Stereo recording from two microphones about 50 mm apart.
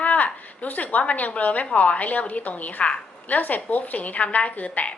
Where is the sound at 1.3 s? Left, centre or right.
Left.